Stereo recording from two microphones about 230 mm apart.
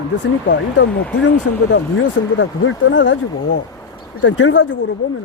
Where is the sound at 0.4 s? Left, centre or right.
Left.